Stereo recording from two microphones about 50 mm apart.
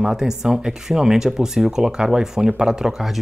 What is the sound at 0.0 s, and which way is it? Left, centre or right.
Speech, centre.